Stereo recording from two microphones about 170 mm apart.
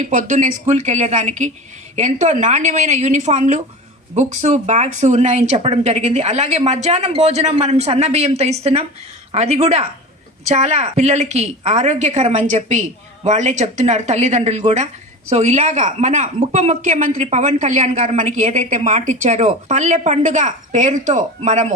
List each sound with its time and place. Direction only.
0.0 s speech: 45° right (ahead or behind)